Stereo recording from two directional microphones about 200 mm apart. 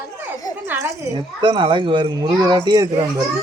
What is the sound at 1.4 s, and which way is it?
Speech, 25° right (ahead or behind).